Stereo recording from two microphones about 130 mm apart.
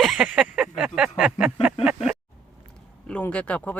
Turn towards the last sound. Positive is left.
turn(degrees=10)  # may be behind; listen again after turning